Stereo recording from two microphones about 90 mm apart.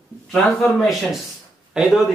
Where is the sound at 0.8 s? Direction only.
Centre (ahead or behind).